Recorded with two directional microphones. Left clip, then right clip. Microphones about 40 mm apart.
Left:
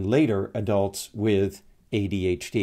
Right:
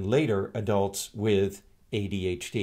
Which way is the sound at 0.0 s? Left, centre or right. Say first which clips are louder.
Left 3 dB; left.